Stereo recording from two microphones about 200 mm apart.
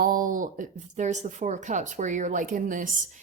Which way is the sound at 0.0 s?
45° right (ahead or behind).